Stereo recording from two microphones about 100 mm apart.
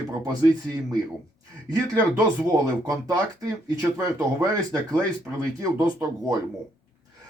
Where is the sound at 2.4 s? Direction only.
35° right (ahead or behind).